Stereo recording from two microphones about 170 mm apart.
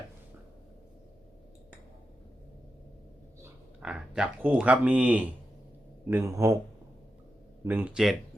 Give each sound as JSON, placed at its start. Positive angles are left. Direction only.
{"t": 3.4, "sound": "a man's voice", "side_deg": -5}
{"t": 7.6, "sound": "a man's voice", "side_deg": -10}